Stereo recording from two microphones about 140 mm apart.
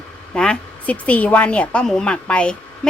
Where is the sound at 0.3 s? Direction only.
5° left (ahead or behind).